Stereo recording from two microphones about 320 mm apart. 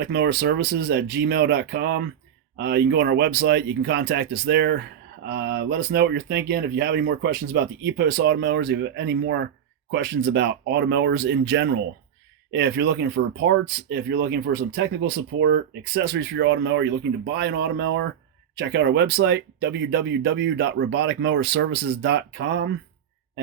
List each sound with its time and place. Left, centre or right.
0.0 s speech: right